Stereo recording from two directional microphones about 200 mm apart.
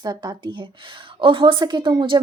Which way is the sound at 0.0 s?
20° right (ahead or behind).